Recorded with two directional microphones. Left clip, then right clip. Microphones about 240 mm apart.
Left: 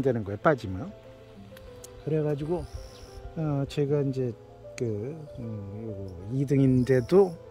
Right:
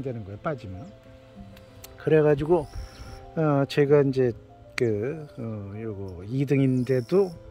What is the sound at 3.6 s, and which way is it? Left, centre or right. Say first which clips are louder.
Speech: right 7 dB; centre.